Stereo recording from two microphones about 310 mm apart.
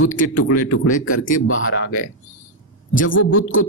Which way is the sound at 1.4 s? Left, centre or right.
Left.